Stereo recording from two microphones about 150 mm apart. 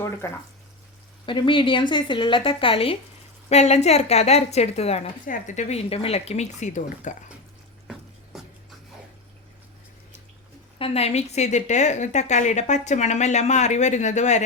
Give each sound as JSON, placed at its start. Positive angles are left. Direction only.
{"t": 0.2, "sound": "speech", "side_deg": 20}
{"t": 1.3, "sound": "a woman's voice", "side_deg": 35}
{"t": 5.2, "sound": "a woman's voice", "side_deg": 60}
{"t": 7.9, "sound": "music", "side_deg": 0}
{"t": 10.8, "sound": "a woman's voice", "side_deg": 40}